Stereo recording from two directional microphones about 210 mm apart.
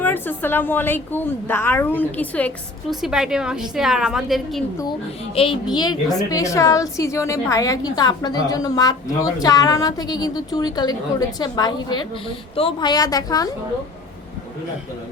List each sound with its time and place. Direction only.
0.0 s a woman's voice: 10° left (ahead or behind)
4.8 s a woman's voice: 25° left (ahead or behind)